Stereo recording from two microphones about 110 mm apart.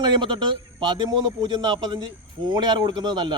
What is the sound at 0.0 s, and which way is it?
Speech, 45° right (ahead or behind).